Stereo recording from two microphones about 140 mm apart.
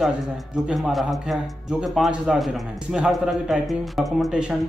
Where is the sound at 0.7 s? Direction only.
Centre (ahead or behind).